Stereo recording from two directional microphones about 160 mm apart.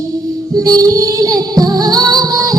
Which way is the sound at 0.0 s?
20° right (ahead or behind).